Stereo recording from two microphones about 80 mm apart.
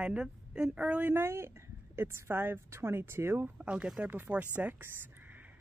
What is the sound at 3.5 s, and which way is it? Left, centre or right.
A woman's voice, centre.